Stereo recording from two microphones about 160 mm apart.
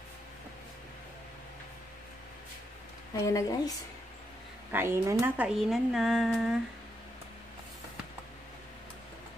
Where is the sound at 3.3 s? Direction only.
20° left (ahead or behind).